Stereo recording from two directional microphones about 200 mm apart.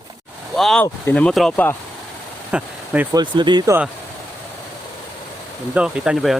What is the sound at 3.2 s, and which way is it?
Speech, 20° right (ahead or behind).